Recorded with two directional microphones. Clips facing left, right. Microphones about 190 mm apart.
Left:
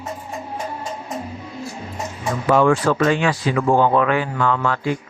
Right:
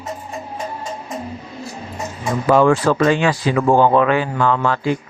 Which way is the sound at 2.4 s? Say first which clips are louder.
Right 2 dB; 35° right (ahead or behind).